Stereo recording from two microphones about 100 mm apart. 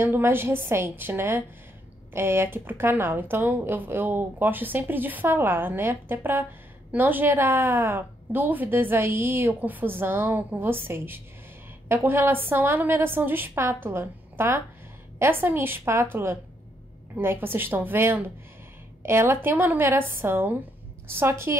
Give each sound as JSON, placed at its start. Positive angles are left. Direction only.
{"t": 0.0, "sound": "a woman's voice", "side_deg": -25}